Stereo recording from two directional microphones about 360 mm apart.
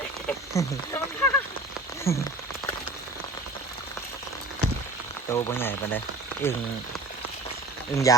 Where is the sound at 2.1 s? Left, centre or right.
Centre.